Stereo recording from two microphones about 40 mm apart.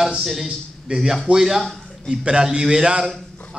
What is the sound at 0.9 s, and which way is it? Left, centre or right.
Speech, right.